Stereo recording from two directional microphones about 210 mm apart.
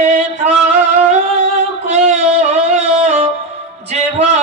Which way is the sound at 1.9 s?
30° right (ahead or behind).